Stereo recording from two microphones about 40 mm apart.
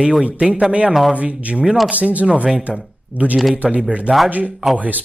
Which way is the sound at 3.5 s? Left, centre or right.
Right.